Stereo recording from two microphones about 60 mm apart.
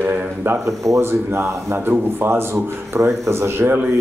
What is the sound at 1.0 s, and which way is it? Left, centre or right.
A man's voice, right.